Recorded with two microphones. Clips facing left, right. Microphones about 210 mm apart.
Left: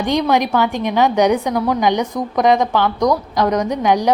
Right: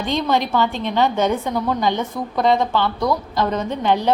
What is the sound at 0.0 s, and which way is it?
A woman's voice, 15° left (ahead or behind).